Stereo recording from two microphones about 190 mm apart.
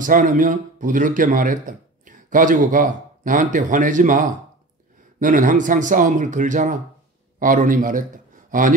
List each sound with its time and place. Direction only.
0.0 s a man's voice: 45° right (ahead or behind)